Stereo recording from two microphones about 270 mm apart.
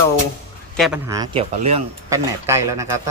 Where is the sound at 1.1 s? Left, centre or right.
Centre.